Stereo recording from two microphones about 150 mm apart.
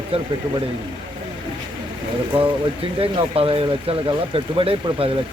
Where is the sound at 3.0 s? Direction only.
40° right (ahead or behind).